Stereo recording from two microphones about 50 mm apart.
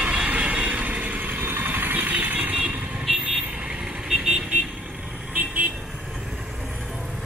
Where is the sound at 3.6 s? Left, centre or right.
Centre.